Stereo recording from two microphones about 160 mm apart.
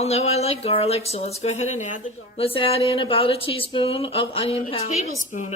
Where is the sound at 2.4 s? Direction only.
35° left (ahead or behind).